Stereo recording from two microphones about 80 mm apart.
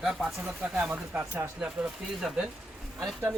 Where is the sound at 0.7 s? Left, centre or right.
Centre.